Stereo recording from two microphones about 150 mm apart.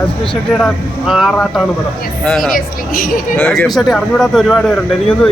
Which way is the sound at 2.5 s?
70° left (ahead or behind).